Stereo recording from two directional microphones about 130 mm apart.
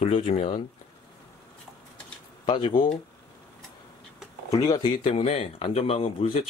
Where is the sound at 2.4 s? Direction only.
40° left (ahead or behind).